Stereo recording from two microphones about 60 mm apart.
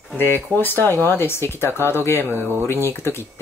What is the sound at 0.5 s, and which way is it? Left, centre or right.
Speech, left.